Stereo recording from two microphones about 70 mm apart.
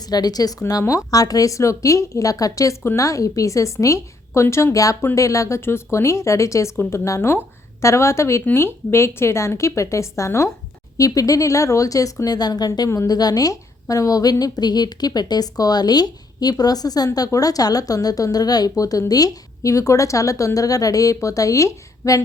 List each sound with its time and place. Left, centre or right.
0.0 s a woman's voice: left
0.7 s a woman's voice: left
10.9 s speech: left
12.9 s a woman's voice: left
13.1 s a woman's voice: left